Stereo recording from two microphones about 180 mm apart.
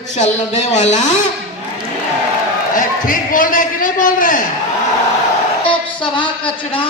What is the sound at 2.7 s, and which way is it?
A man's voice, 50° left (ahead or behind).